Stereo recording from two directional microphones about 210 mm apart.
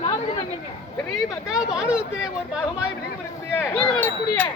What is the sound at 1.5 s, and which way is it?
Speech, 5° right (ahead or behind).